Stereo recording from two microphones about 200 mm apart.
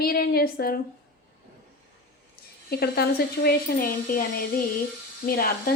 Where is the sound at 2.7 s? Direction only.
50° left (ahead or behind).